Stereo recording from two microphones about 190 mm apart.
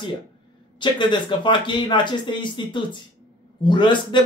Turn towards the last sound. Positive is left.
turn(degrees=25)  # may be behind; listen again after turning